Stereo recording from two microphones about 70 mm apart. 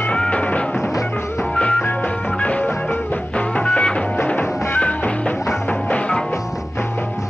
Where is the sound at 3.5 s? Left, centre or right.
Centre.